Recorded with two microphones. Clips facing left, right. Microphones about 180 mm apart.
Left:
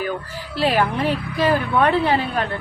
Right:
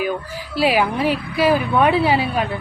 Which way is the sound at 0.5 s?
10° right (ahead or behind).